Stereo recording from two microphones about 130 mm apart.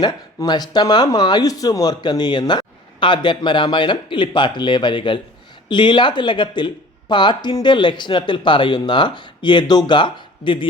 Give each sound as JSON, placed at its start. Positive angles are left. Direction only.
{"t": 0.0, "sound": "speech", "side_deg": 30}